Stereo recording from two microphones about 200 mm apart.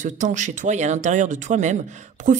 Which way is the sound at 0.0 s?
40° right (ahead or behind).